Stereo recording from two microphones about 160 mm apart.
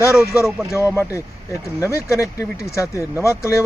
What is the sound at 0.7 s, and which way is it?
A man's voice, 20° left (ahead or behind).